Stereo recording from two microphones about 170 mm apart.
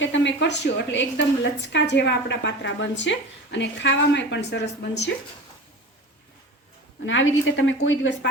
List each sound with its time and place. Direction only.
0.0 s a woman's voice: 90° left
7.0 s a woman's voice: 90° left